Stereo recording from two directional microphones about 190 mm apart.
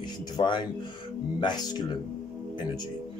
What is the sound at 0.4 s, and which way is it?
Speech, 25° left (ahead or behind).